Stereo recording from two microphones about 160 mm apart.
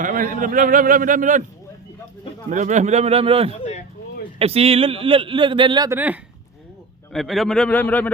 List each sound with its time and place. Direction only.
0.0 s a man's voice: 55° right (ahead or behind)
2.5 s a man's voice: 50° right (ahead or behind)
3.6 s a sound: 45° left (ahead or behind)
4.4 s speech: 35° right (ahead or behind)
5.9 s speech: 10° right (ahead or behind)
7.1 s a man's voice: centre (ahead or behind)